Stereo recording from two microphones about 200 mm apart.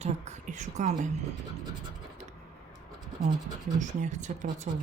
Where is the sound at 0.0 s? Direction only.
35° right (ahead or behind).